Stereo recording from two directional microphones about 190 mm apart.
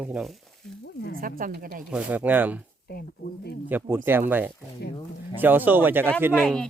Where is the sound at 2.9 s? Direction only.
60° left (ahead or behind).